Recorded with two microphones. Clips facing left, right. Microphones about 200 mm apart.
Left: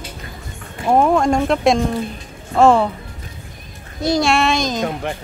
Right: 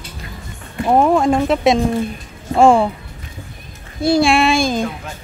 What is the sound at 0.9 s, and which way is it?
Speech, 5° right (ahead or behind).